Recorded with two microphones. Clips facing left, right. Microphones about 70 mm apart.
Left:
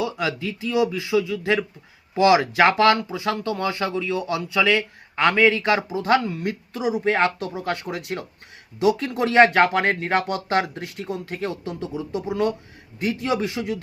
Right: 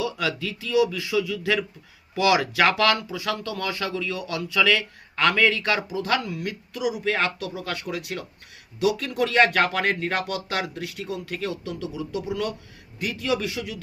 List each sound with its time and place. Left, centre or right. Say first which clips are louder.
0.0 s speech: left 2 dB; left
6.1 s speech: left 6 dB; left